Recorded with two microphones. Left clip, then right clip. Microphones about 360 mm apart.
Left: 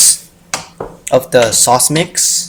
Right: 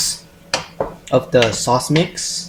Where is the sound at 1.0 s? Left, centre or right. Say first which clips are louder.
Left 5 dB; left.